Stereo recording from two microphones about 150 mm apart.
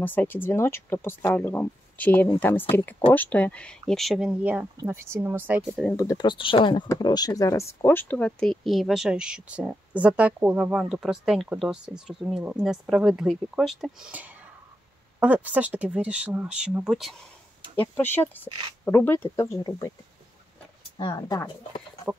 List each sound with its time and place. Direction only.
0.0 s speech: 10° left (ahead or behind); by 5.6 s 15° right (ahead or behind)
5.9 s speech: 25° left (ahead or behind); by 17.1 s 5° right (ahead or behind)
17.6 s speech: 10° left (ahead or behind)
21.0 s a woman's voice: 30° left (ahead or behind)